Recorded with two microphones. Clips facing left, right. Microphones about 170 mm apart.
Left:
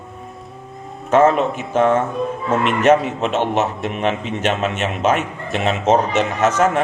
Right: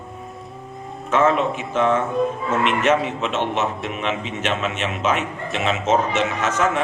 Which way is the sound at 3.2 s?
40° left (ahead or behind).